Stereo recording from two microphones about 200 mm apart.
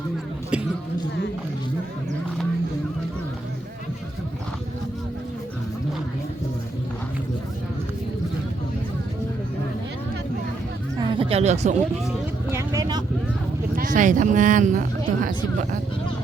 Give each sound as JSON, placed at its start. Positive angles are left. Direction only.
{"t": 0.5, "sound": "speech", "side_deg": -5}
{"t": 10.9, "sound": "a sound", "side_deg": -30}
{"t": 12.5, "sound": "vehicle", "side_deg": -15}
{"t": 13.7, "sound": "speech", "side_deg": -40}